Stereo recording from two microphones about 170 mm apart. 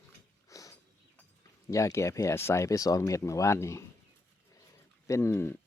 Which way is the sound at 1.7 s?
15° left (ahead or behind).